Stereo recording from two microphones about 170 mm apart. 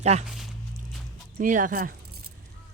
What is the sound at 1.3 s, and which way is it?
Speech, 50° right (ahead or behind).